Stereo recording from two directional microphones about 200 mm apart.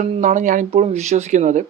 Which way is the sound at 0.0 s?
40° right (ahead or behind).